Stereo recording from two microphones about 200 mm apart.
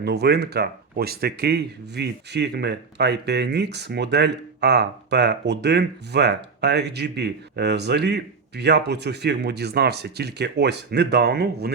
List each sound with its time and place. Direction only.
0.0 s speech: 55° right (ahead or behind)